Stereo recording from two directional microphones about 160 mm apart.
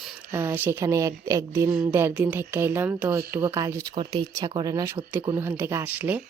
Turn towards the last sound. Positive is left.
turn(degrees=-10)  # may be behind; listen again after turning